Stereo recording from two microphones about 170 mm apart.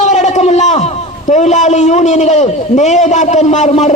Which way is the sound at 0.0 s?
45° left (ahead or behind).